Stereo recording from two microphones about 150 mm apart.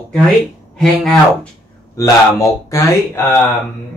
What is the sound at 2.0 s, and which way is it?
Speech, 20° left (ahead or behind).